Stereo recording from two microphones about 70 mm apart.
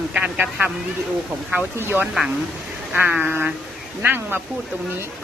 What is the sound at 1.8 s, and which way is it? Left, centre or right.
Speech, right.